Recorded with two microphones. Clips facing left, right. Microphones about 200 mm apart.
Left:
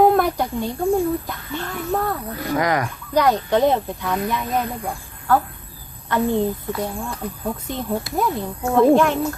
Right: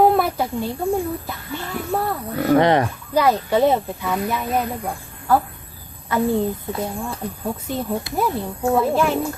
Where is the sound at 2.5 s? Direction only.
30° right (ahead or behind).